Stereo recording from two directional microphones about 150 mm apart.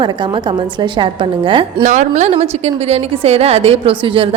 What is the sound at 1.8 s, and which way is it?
A woman's voice, 55° right (ahead or behind).